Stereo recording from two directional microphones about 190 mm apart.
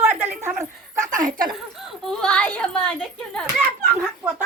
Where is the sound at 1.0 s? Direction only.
45° right (ahead or behind).